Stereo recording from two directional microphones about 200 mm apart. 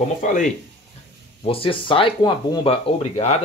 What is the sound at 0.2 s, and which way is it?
Speech, 40° left (ahead or behind).